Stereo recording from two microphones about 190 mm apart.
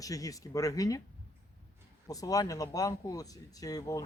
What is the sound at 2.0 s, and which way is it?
Speech, 20° left (ahead or behind).